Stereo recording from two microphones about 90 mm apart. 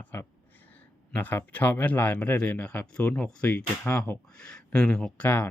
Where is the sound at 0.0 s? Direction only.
20° left (ahead or behind).